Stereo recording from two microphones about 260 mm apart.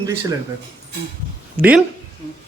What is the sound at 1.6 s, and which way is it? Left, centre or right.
Speech, centre.